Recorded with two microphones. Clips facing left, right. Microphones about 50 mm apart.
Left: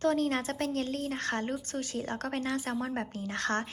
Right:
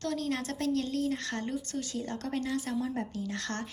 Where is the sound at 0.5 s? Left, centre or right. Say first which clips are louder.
Right 2 dB; left.